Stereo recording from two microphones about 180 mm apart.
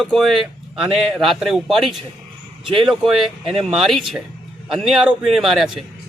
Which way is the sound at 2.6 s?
30° right (ahead or behind).